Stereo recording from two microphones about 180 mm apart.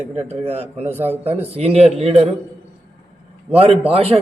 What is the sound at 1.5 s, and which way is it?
Speech, 35° right (ahead or behind).